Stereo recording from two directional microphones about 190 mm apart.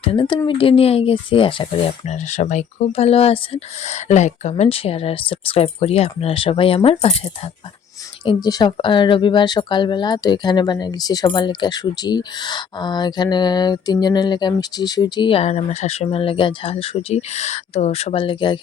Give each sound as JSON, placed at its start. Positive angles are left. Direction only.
{"t": 0.0, "sound": "speech", "side_deg": 25}
{"t": 8.2, "sound": "speech", "side_deg": 25}